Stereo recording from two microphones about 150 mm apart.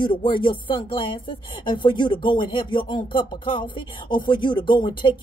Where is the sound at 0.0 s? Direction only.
35° left (ahead or behind).